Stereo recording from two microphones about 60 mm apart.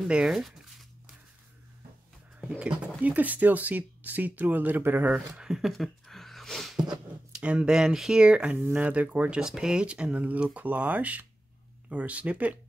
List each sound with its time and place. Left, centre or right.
0.1 s zipper: centre
2.6 s speech: right
5.1 s speech: centre
7.3 s speech: centre